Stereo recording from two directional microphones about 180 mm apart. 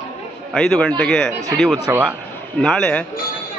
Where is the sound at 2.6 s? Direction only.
5° left (ahead or behind).